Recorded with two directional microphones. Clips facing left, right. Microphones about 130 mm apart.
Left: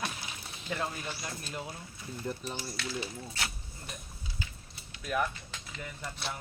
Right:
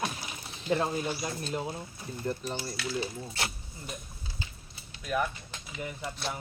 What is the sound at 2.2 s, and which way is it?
Speech, centre (ahead or behind).